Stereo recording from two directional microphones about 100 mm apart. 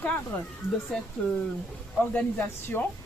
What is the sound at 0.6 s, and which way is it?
Speech, 5° right (ahead or behind).